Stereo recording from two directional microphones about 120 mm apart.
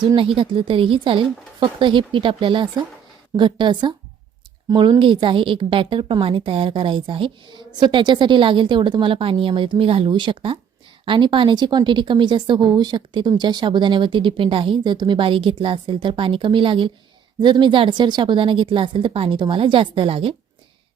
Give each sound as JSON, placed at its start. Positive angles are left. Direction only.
{"t": 0.3, "sound": "a woman's voice", "side_deg": -50}